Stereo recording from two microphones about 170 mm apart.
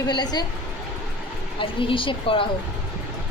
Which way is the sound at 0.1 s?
25° left (ahead or behind).